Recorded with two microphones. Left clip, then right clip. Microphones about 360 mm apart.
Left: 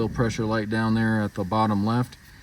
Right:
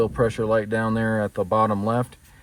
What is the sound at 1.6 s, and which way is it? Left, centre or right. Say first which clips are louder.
Speech: right 3 dB; centre.